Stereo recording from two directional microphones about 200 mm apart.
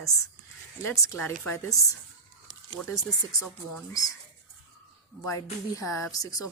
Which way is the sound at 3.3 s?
15° left (ahead or behind).